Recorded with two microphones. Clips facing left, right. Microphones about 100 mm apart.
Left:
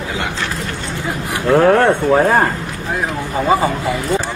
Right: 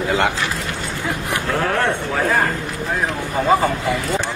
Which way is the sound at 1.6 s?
45° left (ahead or behind).